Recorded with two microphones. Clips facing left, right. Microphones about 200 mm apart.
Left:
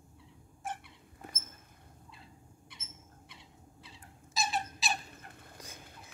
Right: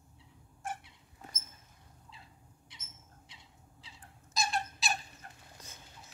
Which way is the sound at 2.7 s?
55° left (ahead or behind).